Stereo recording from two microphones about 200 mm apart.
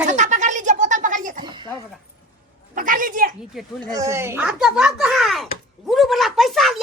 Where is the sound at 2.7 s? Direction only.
45° right (ahead or behind).